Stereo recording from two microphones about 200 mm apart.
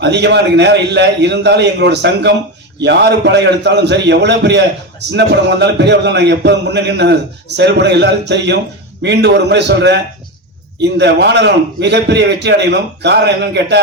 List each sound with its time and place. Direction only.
0.0 s a man's voice: 60° right (ahead or behind)